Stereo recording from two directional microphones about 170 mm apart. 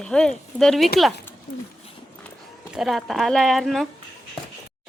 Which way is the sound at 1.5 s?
50° left (ahead or behind).